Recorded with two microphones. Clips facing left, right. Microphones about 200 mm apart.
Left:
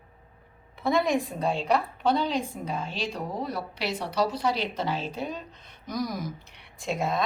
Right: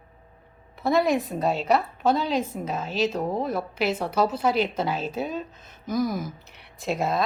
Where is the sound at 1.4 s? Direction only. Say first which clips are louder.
Right 3 dB; 40° right (ahead or behind).